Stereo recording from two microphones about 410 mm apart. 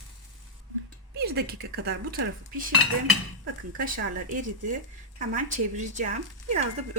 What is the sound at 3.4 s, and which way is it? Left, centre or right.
Speech, right.